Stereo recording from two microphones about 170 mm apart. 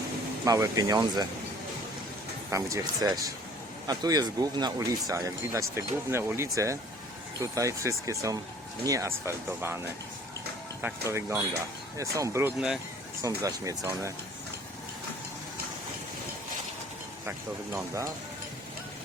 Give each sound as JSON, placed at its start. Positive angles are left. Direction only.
{"t": 0.4, "sound": "speech", "side_deg": -20}
{"t": 2.5, "sound": "speech", "side_deg": -20}
{"t": 12.5, "sound": "speech", "side_deg": -5}
{"t": 13.2, "sound": "speech", "side_deg": -20}
{"t": 17.7, "sound": "speech", "side_deg": -20}